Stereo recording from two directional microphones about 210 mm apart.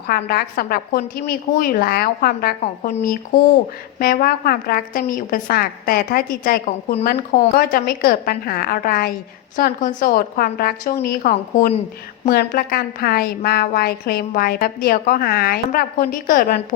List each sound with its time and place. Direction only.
0.1 s a woman's voice: 45° left (ahead or behind)